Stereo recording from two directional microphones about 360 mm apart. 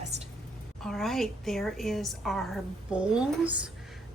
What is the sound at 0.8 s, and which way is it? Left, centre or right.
A woman's voice, centre.